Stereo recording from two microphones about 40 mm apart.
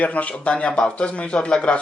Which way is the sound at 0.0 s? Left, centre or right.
Left.